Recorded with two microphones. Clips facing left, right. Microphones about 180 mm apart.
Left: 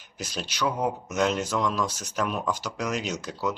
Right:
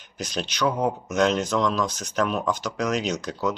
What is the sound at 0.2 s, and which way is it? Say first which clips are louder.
Speech: right 4 dB; 5° left (ahead or behind).